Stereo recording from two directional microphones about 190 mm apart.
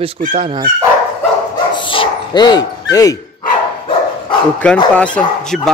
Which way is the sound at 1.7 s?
25° left (ahead or behind).